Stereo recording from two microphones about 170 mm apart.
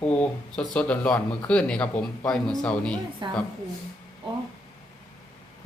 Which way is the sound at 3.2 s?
30° right (ahead or behind).